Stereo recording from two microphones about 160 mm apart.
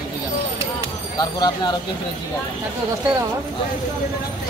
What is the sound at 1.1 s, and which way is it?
Speech, 25° left (ahead or behind).